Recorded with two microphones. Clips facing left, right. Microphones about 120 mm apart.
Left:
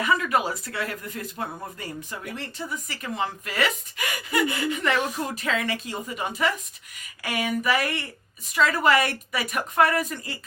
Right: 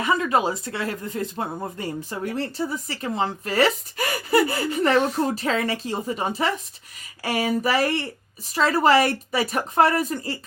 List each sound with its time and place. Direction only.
0.0 s speech: 30° right (ahead or behind)